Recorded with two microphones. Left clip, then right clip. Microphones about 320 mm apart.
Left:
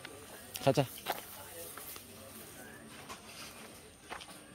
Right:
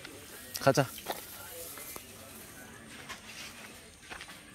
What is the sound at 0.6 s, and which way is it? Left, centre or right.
Speech, centre.